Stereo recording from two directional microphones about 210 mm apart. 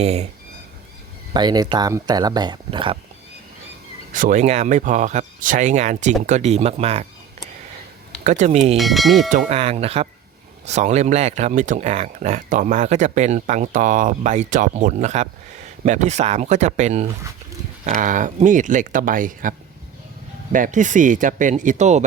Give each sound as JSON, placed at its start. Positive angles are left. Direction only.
{"t": 0.0, "sound": "speech", "side_deg": -30}
{"t": 1.3, "sound": "speech", "side_deg": -20}
{"t": 4.1, "sound": "speech", "side_deg": -40}
{"t": 8.2, "sound": "speech", "side_deg": -35}
{"t": 8.8, "sound": "speech", "side_deg": 0}
{"t": 9.5, "sound": "speech", "side_deg": -30}